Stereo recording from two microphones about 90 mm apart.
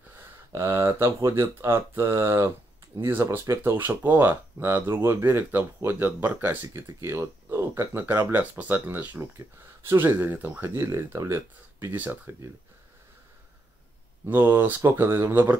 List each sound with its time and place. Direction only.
0.5 s speech: 30° right (ahead or behind)
14.2 s speech: 25° right (ahead or behind)